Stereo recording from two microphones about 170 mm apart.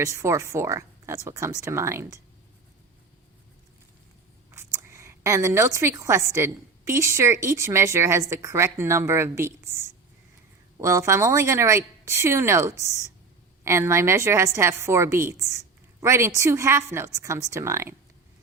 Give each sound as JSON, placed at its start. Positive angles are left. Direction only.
{"t": 0.0, "sound": "a woman's voice", "side_deg": -15}
{"t": 4.5, "sound": "a woman's voice", "side_deg": -15}